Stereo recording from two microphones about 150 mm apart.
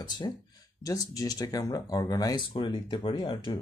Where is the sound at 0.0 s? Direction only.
30° left (ahead or behind).